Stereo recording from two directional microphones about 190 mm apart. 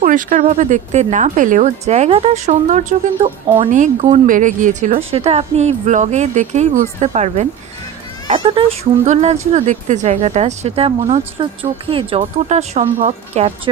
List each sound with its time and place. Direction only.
0.0 s speech: 45° right (ahead or behind)